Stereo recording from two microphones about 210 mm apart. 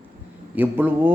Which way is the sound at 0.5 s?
10° right (ahead or behind).